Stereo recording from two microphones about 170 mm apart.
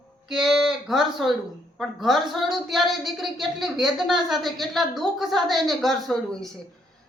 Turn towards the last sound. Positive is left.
turn(degrees=0)  # may be behind; listen again after turning